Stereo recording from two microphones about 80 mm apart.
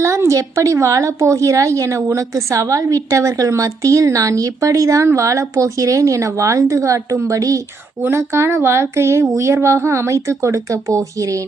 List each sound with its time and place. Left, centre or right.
0.0 s a woman's voice: right
8.0 s a woman's voice: right